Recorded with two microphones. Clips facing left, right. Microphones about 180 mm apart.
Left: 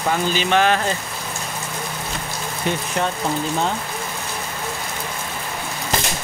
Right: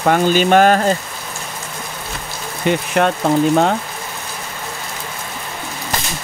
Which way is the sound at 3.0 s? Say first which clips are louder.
Right 10 dB; 65° right (ahead or behind).